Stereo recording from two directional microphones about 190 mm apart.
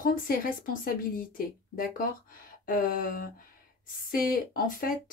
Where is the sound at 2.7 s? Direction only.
45° left (ahead or behind).